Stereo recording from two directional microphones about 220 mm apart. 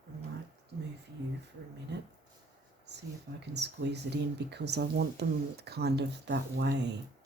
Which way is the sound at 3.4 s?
50° right (ahead or behind).